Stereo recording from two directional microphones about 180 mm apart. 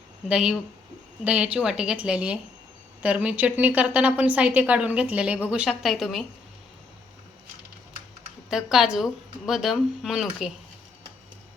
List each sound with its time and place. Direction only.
0.3 s a woman's voice: 5° right (ahead or behind)
8.4 s a woman's voice: centre (ahead or behind)